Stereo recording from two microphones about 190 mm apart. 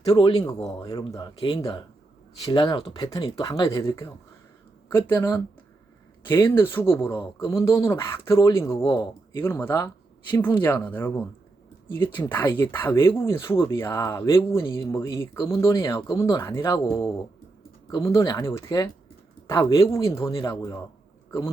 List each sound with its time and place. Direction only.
0.0 s speech: 25° left (ahead or behind)
12.0 s speech: 25° left (ahead or behind)
12.7 s speech: 15° left (ahead or behind)
21.2 s a sound: 15° left (ahead or behind)